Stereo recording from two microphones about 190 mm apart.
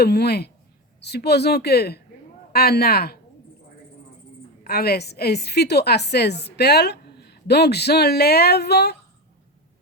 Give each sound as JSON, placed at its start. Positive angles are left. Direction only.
{"t": 0.0, "sound": "a woman's voice", "side_deg": 60}
{"t": 4.6, "sound": "a woman's voice", "side_deg": 55}